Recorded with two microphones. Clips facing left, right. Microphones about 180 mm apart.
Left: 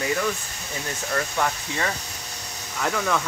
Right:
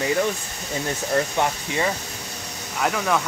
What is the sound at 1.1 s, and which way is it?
Speech, 25° right (ahead or behind).